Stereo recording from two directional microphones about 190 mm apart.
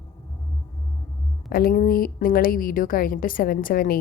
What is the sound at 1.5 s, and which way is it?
A woman's voice, 50° left (ahead or behind).